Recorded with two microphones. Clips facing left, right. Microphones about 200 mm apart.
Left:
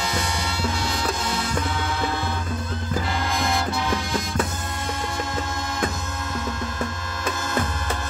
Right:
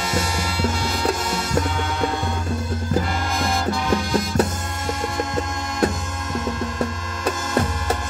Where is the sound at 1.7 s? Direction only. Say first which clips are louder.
Right 2 dB; 5° left (ahead or behind).